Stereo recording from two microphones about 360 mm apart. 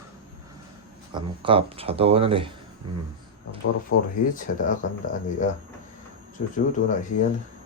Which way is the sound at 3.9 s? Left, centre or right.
Left.